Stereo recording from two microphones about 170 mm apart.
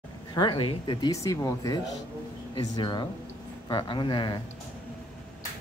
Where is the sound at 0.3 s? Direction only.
30° left (ahead or behind).